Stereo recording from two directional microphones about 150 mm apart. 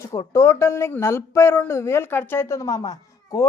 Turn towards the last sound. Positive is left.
turn(degrees=25)  # may be behind; listen again after turning